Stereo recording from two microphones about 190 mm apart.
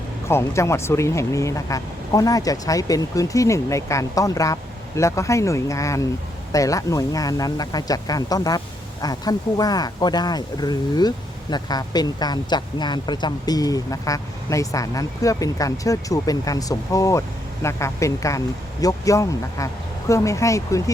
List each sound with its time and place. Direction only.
0.3 s speech: 15° left (ahead or behind)